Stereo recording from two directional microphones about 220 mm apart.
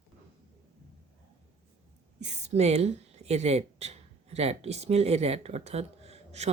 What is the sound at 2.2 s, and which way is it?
A woman's voice, 30° right (ahead or behind).